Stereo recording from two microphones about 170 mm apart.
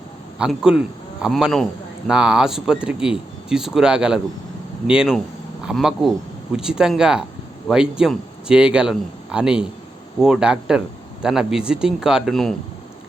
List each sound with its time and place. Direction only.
0.3 s a man's voice: 5° right (ahead or behind)